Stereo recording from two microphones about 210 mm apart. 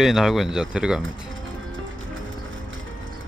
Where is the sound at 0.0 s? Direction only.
Centre (ahead or behind).